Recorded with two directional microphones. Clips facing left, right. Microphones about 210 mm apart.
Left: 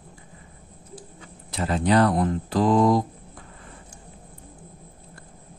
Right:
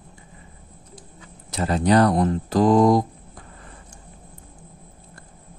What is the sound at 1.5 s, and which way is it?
Speech, 40° right (ahead or behind).